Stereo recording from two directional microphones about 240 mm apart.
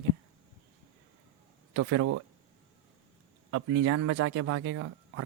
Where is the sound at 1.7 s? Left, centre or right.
Right.